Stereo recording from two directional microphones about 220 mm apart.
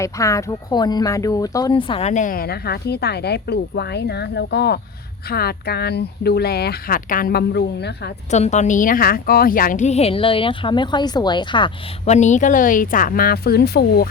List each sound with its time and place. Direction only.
0.0 s a woman's voice: 15° left (ahead or behind); by 8.1 s 50° left (ahead or behind)
8.3 s a woman's voice: 30° left (ahead or behind)